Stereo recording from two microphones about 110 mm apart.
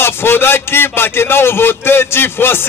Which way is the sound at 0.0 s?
20° left (ahead or behind).